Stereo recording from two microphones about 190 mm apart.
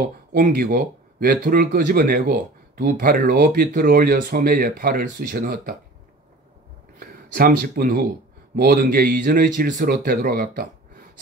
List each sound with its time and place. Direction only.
0.0 s speech: 50° right (ahead or behind)
7.0 s speech: 50° right (ahead or behind)